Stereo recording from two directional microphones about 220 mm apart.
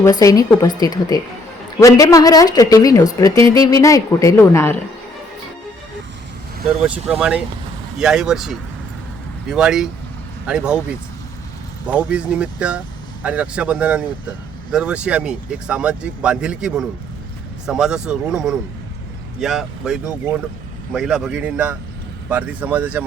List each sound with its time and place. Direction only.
0.0 s a woman's voice: 15° left (ahead or behind)
6.8 s speech: 5° right (ahead or behind)
11.9 s speech: 5° right (ahead or behind)